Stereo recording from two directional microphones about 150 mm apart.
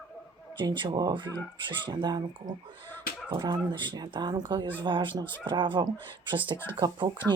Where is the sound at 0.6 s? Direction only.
30° right (ahead or behind).